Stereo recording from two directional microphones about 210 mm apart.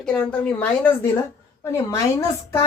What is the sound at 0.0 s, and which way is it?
A woman's voice, 5° left (ahead or behind).